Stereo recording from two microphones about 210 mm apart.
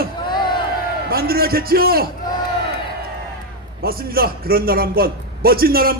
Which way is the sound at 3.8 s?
45° right (ahead or behind).